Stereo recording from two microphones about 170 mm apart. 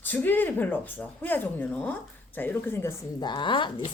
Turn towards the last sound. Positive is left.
turn(degrees=30)  # may be behind; listen again after turning